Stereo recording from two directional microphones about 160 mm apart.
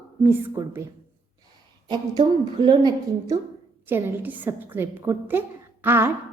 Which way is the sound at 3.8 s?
10° right (ahead or behind).